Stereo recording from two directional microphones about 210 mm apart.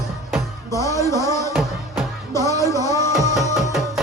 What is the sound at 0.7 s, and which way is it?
Music, 15° left (ahead or behind).